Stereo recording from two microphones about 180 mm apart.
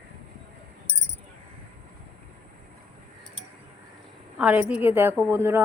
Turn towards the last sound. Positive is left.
turn(degrees=-15)  # may be behind; listen again after turning